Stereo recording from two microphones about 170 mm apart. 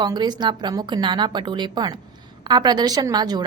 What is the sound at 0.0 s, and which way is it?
A woman's voice, 25° right (ahead or behind).